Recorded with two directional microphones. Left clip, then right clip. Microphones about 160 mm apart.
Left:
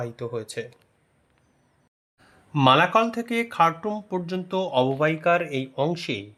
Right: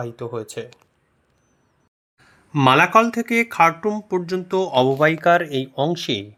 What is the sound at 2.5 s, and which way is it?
Speech, 5° right (ahead or behind).